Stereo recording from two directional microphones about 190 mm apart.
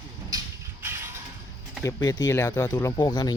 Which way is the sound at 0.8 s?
15° right (ahead or behind).